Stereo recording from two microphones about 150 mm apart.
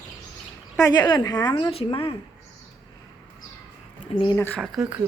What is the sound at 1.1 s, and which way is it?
A woman's voice, 25° left (ahead or behind).